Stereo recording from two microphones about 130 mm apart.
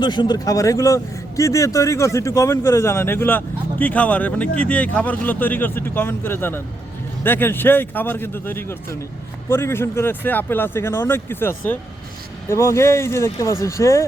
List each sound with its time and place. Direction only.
0.0 s speech: 35° left (ahead or behind)